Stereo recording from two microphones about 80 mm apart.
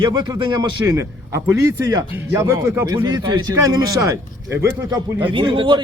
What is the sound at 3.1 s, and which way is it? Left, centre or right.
Speech, right.